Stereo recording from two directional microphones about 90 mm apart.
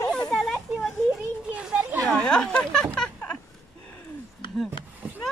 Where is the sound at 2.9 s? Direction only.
10° left (ahead or behind).